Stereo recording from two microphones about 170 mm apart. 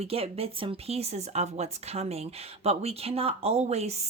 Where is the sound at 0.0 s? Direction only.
35° right (ahead or behind).